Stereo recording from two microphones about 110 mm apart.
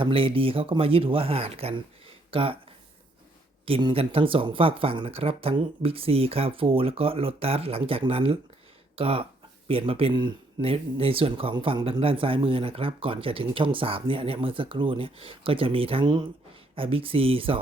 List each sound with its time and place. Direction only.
0.0 s speech: 55° right (ahead or behind)
3.7 s speech: 50° right (ahead or behind)